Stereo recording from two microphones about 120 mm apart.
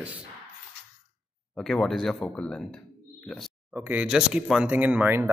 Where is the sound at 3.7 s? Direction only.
15° right (ahead or behind).